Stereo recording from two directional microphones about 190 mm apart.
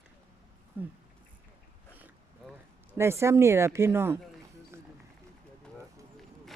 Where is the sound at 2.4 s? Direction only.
Centre (ahead or behind).